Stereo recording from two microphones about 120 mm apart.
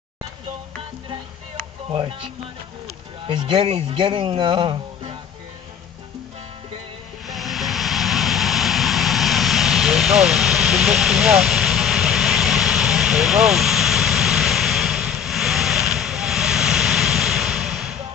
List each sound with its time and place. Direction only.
1.9 s speech: 45° right (ahead or behind)
7.2 s vehicle: centre (ahead or behind)